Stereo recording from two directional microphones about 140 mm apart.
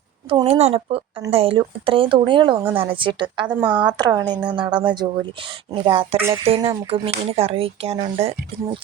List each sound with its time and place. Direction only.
0.3 s speech: 40° right (ahead or behind)
3.6 s a woman's voice: 10° right (ahead or behind)
3.8 s speech: 30° right (ahead or behind)